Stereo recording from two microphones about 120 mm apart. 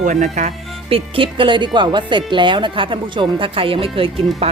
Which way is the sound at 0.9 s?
50° right (ahead or behind).